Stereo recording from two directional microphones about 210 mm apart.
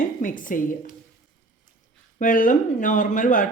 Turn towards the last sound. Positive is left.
turn(degrees=40)  # may be behind; listen again after turning